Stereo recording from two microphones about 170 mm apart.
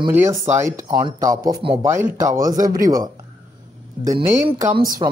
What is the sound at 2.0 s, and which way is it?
Speech, 15° right (ahead or behind).